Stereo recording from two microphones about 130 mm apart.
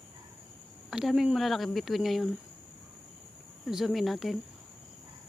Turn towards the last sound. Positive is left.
turn(degrees=0)  # may be behind; listen again after turning